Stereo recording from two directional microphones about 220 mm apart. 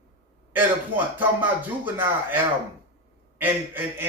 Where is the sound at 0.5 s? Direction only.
10° right (ahead or behind).